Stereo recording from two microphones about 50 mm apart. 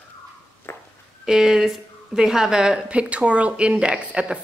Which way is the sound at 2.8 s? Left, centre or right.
Right.